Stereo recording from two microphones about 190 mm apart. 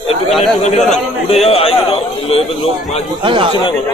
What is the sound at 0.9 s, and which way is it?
A man's voice, 35° left (ahead or behind).